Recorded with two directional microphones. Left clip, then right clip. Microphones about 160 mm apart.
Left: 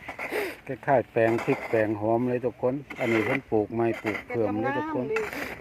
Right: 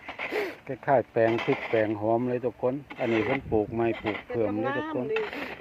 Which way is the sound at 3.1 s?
40° left (ahead or behind).